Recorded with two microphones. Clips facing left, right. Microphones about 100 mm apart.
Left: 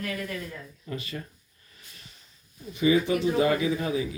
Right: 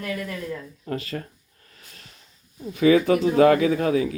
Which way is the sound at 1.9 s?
55° right (ahead or behind).